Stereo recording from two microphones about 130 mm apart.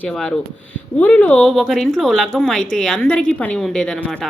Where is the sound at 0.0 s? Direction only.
5° left (ahead or behind).